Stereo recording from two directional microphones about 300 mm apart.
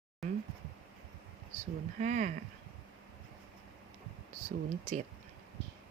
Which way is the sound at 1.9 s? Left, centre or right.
Right.